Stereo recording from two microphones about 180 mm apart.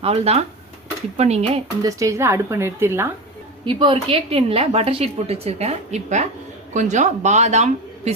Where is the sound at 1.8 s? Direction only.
15° right (ahead or behind).